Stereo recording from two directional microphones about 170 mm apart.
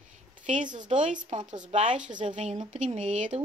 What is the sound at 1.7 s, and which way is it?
Speech, 35° right (ahead or behind).